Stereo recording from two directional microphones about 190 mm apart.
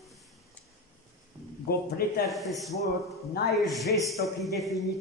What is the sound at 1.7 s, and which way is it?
Speech, 55° left (ahead or behind).